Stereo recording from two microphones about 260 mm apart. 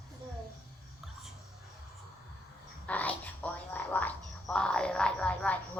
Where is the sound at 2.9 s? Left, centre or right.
Centre.